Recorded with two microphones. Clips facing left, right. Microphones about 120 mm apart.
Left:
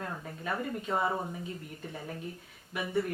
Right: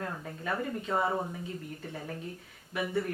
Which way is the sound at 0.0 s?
5° left (ahead or behind).